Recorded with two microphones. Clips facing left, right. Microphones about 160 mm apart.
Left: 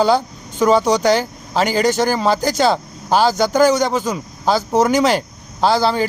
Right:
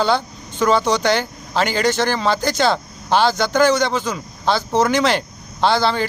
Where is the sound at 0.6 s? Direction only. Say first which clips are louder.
Left 3 dB; 10° left (ahead or behind).